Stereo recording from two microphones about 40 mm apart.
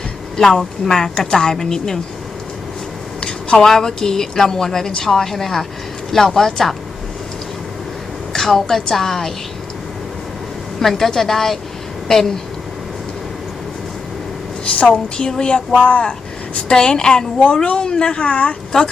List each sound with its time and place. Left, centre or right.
0.3 s a woman's voice: centre
3.2 s a woman's voice: left
8.3 s a woman's voice: centre
10.8 s a woman's voice: centre
14.6 s a woman's voice: left